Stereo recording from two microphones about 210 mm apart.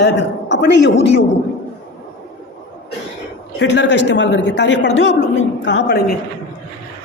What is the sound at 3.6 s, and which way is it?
A woman's voice, 55° left (ahead or behind).